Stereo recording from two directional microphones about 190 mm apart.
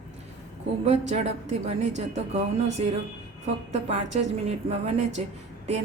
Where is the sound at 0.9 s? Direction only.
35° right (ahead or behind).